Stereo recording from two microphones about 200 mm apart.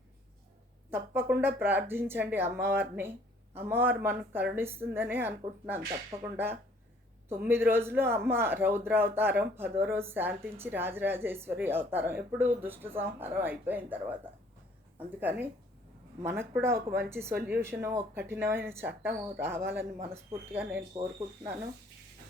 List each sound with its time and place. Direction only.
0.9 s a woman's voice: 10° right (ahead or behind)
20.9 s speech: 20° right (ahead or behind)